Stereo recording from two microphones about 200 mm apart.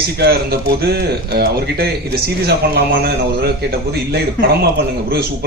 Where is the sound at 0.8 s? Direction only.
55° right (ahead or behind).